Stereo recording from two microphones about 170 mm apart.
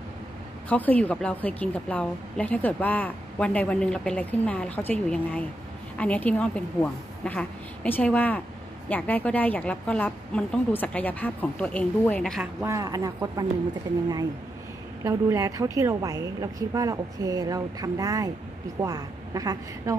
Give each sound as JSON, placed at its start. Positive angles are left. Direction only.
{"t": 0.7, "sound": "a woman's voice", "side_deg": 10}
{"t": 12.6, "sound": "a woman's voice", "side_deg": -20}
{"t": 15.0, "sound": "a woman's voice", "side_deg": -20}